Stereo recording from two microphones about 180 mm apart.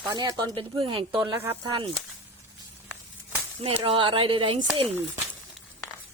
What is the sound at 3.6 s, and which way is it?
Speech, 30° right (ahead or behind).